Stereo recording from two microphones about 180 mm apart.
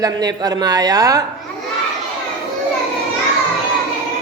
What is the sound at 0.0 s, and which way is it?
Speech, 20° right (ahead or behind).